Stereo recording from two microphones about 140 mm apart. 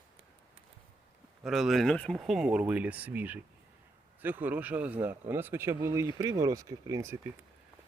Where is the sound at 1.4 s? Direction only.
5° right (ahead or behind); by 7.3 s 20° right (ahead or behind).